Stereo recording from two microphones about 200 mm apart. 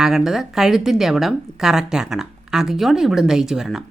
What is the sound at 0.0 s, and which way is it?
Speech, centre (ahead or behind).